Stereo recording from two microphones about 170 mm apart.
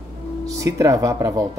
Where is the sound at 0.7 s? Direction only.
20° right (ahead or behind).